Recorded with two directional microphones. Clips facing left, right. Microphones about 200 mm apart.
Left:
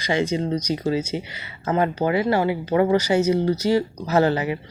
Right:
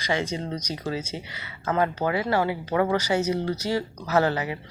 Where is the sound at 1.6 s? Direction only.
25° left (ahead or behind).